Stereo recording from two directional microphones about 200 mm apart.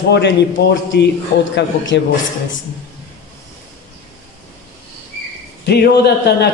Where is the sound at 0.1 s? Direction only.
60° left (ahead or behind).